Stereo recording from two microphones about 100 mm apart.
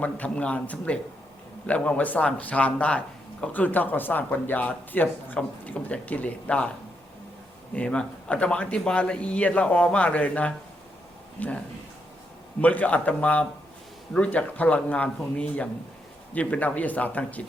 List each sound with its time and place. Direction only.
0.0 s speech: 15° left (ahead or behind)
7.7 s speech: 10° left (ahead or behind)
12.6 s speech: 15° left (ahead or behind)